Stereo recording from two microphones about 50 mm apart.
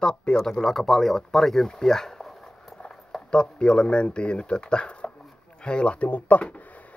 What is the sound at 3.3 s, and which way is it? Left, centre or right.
Speech, centre.